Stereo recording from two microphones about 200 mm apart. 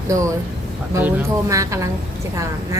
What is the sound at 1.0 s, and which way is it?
Speech, 15° right (ahead or behind).